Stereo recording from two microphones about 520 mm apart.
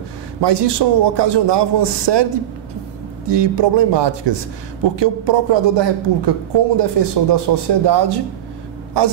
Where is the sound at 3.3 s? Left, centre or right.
Right.